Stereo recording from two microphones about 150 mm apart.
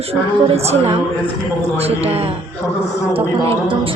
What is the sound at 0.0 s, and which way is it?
A woman's voice, 40° right (ahead or behind).